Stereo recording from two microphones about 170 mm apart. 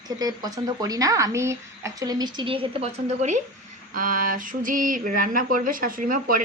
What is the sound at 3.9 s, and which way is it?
Speech, 50° right (ahead or behind).